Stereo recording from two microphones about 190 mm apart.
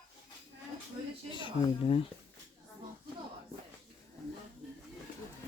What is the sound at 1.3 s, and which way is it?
Speech, 25° left (ahead or behind).